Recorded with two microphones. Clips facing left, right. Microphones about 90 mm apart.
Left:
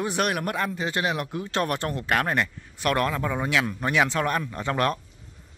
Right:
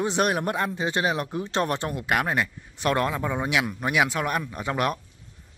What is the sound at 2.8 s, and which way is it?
A man's voice, 20° right (ahead or behind).